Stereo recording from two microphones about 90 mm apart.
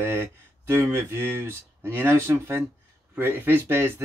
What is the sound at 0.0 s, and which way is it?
Speech, 30° right (ahead or behind).